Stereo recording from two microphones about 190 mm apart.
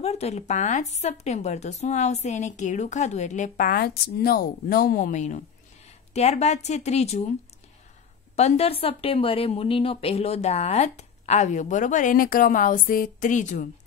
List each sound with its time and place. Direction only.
0.0 s speech: 35° left (ahead or behind)
8.4 s speech: 35° left (ahead or behind)